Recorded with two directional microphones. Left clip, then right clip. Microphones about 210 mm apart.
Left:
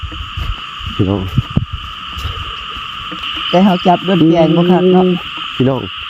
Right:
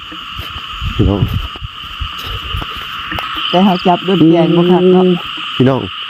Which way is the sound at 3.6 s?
45° left (ahead or behind).